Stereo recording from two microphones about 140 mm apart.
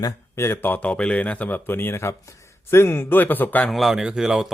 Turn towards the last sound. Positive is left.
turn(degrees=-5)  # may be behind; listen again after turning